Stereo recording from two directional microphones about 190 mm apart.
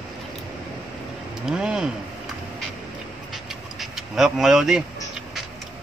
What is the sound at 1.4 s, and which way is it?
Speech, 5° right (ahead or behind).